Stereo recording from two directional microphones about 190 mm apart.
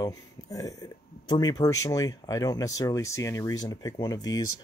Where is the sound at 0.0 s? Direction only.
20° left (ahead or behind).